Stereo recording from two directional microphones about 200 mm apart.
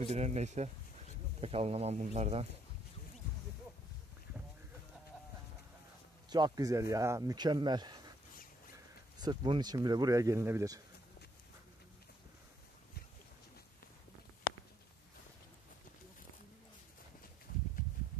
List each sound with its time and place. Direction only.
0.0 s speech: 35° right (ahead or behind)
6.3 s speech: 20° right (ahead or behind)
9.2 s speech: 20° right (ahead or behind)